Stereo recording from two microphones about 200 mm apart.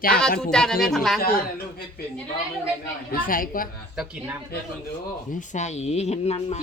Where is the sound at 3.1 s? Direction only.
45° left (ahead or behind).